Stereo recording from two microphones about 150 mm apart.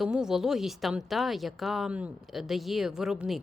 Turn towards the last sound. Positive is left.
turn(degrees=-5)  # may be behind; listen again after turning